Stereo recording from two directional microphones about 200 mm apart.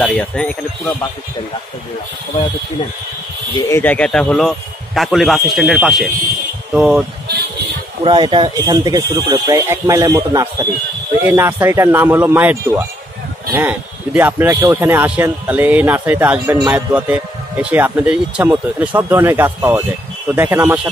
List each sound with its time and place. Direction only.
0.0 s speech: 5° left (ahead or behind)
3.5 s speech: 15° left (ahead or behind); by 7.1 s 5° right (ahead or behind)
8.0 s a man's voice: 25° right (ahead or behind); by 20.9 s 10° right (ahead or behind)